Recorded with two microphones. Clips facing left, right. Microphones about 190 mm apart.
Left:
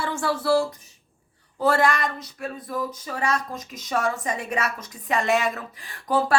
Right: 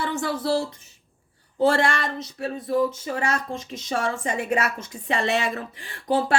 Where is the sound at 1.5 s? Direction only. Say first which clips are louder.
Right 1 dB; 25° right (ahead or behind).